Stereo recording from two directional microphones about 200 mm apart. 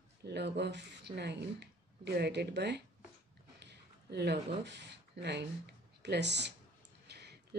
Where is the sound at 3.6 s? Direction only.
55° right (ahead or behind).